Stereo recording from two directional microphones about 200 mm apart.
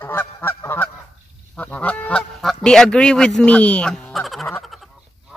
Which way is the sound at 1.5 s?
10° left (ahead or behind).